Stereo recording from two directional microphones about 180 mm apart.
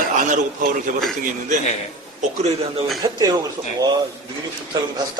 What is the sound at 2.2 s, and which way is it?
Speech, 40° right (ahead or behind).